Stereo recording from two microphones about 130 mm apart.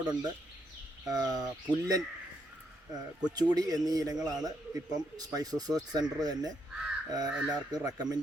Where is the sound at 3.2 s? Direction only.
30° right (ahead or behind).